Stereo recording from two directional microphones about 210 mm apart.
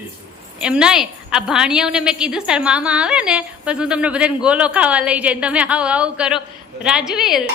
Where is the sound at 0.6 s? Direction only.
5° right (ahead or behind).